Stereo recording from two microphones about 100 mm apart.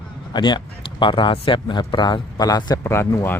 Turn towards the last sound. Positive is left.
turn(degrees=25)  # may be behind; listen again after turning